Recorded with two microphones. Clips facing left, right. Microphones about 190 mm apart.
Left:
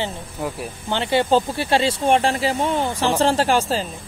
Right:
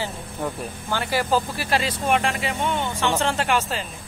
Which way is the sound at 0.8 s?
25° left (ahead or behind).